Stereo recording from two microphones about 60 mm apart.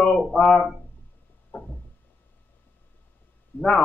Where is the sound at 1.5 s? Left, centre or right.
Left.